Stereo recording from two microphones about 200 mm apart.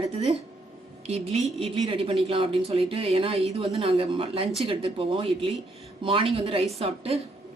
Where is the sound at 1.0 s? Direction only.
30° right (ahead or behind).